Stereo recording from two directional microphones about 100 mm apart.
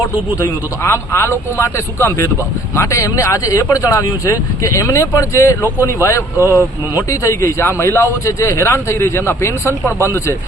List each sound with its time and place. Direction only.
0.3 s speech: 30° left (ahead or behind)